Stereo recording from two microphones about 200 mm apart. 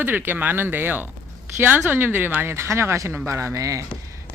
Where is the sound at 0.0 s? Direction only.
10° right (ahead or behind).